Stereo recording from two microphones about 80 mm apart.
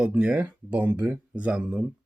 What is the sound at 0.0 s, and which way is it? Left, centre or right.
Speech, centre.